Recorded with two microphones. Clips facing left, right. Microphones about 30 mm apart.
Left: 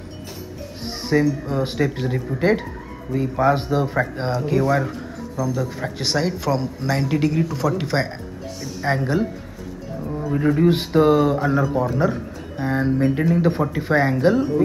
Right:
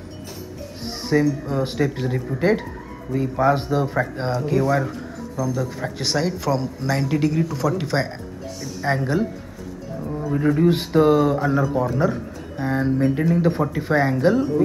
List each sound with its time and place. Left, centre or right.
1.0 s speech: centre